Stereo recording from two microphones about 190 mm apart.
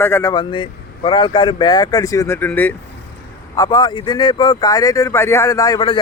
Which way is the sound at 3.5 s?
20° left (ahead or behind).